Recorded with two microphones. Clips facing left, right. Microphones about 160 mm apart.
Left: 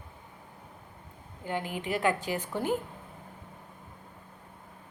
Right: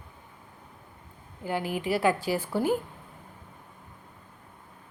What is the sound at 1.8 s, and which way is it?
Speech, 35° right (ahead or behind).